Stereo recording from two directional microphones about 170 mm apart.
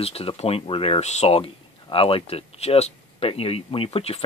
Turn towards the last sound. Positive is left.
turn(degrees=35)  # may be behind; listen again after turning